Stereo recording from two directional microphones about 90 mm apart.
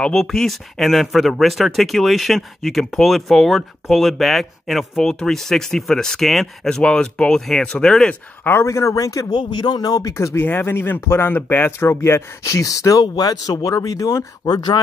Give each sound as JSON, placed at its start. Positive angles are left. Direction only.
{"t": 0.0, "sound": "speech", "side_deg": 5}
{"t": 8.5, "sound": "a man's voice", "side_deg": 30}
{"t": 10.3, "sound": "speech", "side_deg": 25}
{"t": 14.5, "sound": "speech", "side_deg": 50}